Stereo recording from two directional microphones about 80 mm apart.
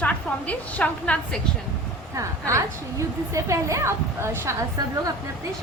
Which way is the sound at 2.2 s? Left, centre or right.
Right.